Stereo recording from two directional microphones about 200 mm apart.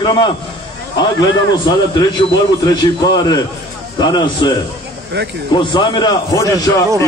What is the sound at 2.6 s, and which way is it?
A man's voice, 20° left (ahead or behind).